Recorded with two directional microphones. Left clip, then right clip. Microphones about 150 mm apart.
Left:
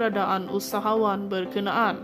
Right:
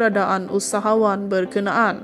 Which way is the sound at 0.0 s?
30° right (ahead or behind).